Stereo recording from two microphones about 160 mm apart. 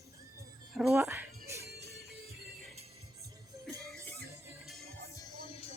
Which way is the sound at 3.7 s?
20° right (ahead or behind).